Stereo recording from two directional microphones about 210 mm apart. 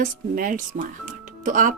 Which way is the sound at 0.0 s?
40° right (ahead or behind).